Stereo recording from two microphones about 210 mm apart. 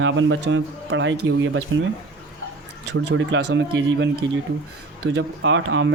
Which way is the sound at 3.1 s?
65° right (ahead or behind).